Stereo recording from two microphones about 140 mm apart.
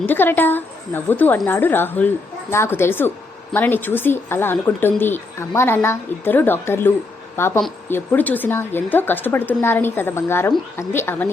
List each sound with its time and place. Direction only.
0.1 s speech: 15° left (ahead or behind)